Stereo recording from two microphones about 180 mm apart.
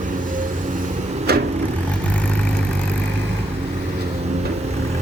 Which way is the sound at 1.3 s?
65° right (ahead or behind).